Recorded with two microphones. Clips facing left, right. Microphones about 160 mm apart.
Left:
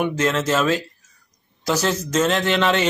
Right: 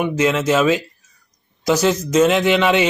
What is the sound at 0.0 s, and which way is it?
Speech, 10° right (ahead or behind).